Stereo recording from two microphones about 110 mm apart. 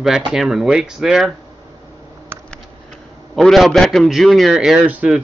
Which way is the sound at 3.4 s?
Centre (ahead or behind).